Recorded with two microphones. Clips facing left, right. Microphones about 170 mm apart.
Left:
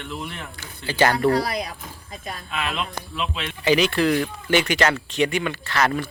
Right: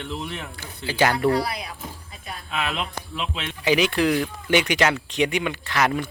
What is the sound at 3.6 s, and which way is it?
Speech, 10° right (ahead or behind).